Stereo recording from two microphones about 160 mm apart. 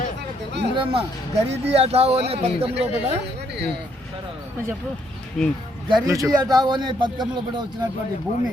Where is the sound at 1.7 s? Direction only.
40° right (ahead or behind).